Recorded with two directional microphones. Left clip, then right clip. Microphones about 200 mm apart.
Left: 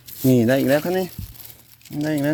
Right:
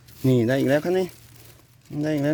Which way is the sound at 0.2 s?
5° left (ahead or behind).